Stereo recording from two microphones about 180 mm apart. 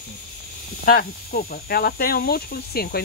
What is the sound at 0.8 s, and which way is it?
Speech, 55° left (ahead or behind).